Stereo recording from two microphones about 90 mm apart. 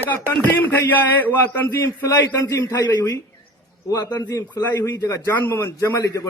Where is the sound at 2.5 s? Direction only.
35° left (ahead or behind).